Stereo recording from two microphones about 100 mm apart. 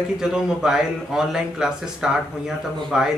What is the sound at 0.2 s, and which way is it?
A man's voice, 5° right (ahead or behind).